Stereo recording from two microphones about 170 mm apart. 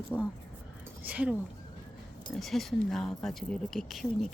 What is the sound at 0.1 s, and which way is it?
Speech, 10° left (ahead or behind).